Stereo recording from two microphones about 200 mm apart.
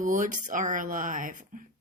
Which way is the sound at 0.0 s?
40° right (ahead or behind).